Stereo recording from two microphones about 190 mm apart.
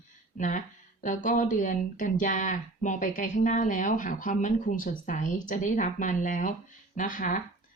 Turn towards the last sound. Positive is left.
turn(degrees=45)  # may be behind; listen again after turning